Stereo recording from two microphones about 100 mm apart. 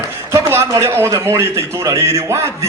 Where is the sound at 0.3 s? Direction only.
25° right (ahead or behind).